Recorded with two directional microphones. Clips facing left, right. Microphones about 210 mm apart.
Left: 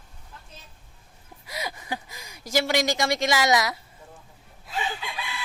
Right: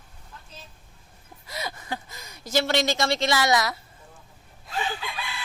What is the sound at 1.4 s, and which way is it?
Gasp, 15° left (ahead or behind).